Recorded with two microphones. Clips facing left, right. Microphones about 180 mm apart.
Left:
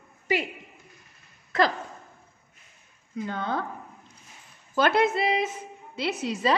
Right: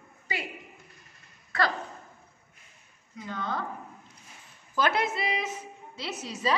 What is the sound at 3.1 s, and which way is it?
Speech, 60° left (ahead or behind).